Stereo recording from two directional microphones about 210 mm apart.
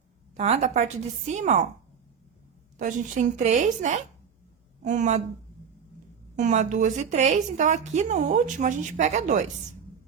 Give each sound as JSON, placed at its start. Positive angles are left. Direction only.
{"t": 0.3, "sound": "a woman's voice", "side_deg": -30}
{"t": 2.7, "sound": "a woman's voice", "side_deg": -35}
{"t": 6.3, "sound": "a woman's voice", "side_deg": -35}